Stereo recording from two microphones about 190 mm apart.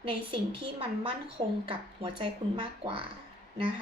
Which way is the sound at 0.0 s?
30° right (ahead or behind).